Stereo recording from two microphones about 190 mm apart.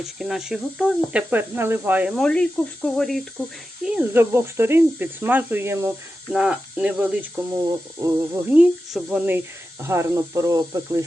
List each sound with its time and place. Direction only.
0.0 s speech: centre (ahead or behind); by 11.0 s 15° right (ahead or behind)